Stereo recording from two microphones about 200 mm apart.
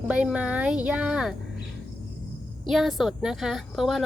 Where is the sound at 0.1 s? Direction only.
5° right (ahead or behind).